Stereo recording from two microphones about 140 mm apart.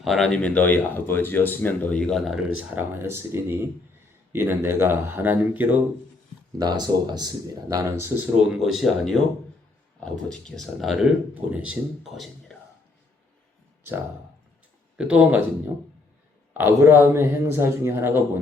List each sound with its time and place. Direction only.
0.0 s speech: centre (ahead or behind)
2.6 s a man's voice: 10° right (ahead or behind)
6.6 s speech: 30° right (ahead or behind)
8.5 s speech: centre (ahead or behind)
14.9 s a man's voice: 10° right (ahead or behind)
16.6 s a man's voice: 15° right (ahead or behind)